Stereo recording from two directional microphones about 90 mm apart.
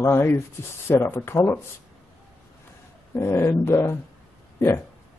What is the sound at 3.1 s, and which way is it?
Speech, 30° left (ahead or behind).